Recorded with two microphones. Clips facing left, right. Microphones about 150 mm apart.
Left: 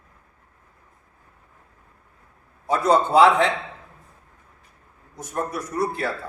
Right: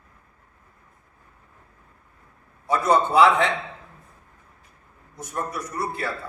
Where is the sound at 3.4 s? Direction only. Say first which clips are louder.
Left 1 dB; centre (ahead or behind).